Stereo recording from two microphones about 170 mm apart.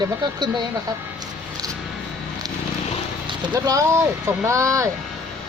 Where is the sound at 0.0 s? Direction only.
25° right (ahead or behind).